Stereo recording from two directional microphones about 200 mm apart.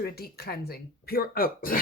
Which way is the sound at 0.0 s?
50° left (ahead or behind).